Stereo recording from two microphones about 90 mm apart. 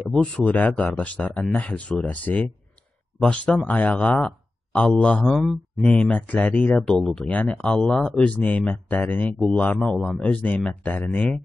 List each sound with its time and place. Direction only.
0.1 s speech: 10° left (ahead or behind)
5.3 s speech: centre (ahead or behind)
5.9 s speech: 15° left (ahead or behind)